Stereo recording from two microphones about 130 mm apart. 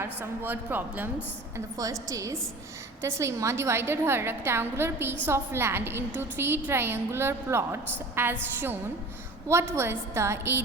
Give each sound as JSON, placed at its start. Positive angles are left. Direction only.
{"t": 0.0, "sound": "a woman's voice", "side_deg": -15}
{"t": 1.5, "sound": "a woman's voice", "side_deg": -30}